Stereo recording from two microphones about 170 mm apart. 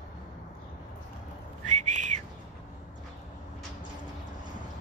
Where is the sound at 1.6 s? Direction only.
45° right (ahead or behind).